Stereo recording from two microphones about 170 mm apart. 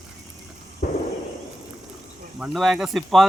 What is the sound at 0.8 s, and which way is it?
Fireworks, 60° left (ahead or behind).